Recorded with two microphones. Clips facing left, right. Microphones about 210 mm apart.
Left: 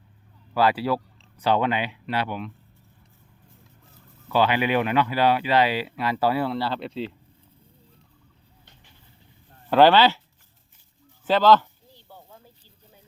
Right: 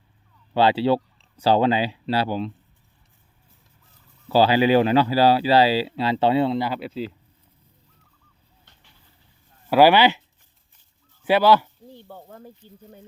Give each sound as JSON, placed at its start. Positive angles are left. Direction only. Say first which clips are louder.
{"t": 0.5, "sound": "speech", "louder": "right 4 dB", "side_deg": -25}
{"t": 4.3, "sound": "speech", "louder": "right 5 dB", "side_deg": -30}
{"t": 6.7, "sound": "speech", "louder": "right 1 dB", "side_deg": -5}
{"t": 9.6, "sound": "speech", "louder": "right 1 dB", "side_deg": -10}
{"t": 11.3, "sound": "speech", "louder": "right 1 dB", "side_deg": -10}
{"t": 11.9, "sound": "snake", "louder": "right 6 dB", "side_deg": -55}